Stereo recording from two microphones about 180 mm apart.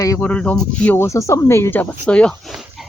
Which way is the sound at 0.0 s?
20° left (ahead or behind).